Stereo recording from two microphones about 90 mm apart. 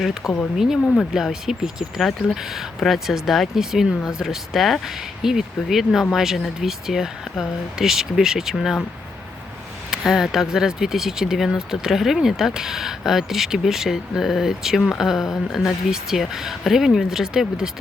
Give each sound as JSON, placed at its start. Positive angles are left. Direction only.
{"t": 0.0, "sound": "speech", "side_deg": -5}
{"t": 9.9, "sound": "speech", "side_deg": -5}